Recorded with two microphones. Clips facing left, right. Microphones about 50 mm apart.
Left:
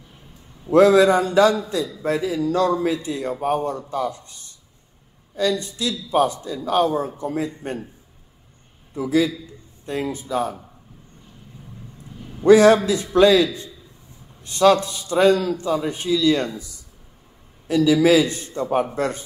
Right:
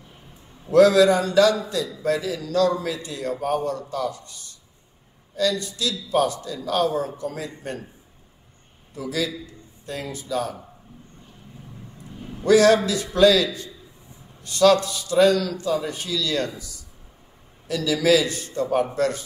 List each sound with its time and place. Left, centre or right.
0.7 s a man's voice: left
8.9 s a man's voice: left
12.4 s a man's voice: left